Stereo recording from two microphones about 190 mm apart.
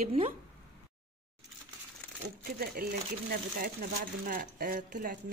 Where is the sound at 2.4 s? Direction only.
50° right (ahead or behind).